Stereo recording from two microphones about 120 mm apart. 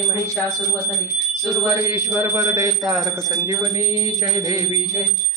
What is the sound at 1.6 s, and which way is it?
Speech, 25° right (ahead or behind).